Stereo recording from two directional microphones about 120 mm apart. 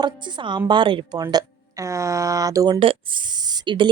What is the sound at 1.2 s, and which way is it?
Speech, 30° right (ahead or behind).